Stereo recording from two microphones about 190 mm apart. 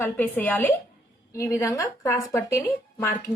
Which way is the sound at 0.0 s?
10° left (ahead or behind).